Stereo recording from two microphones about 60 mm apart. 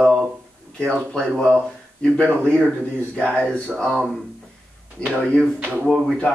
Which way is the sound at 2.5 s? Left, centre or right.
Centre.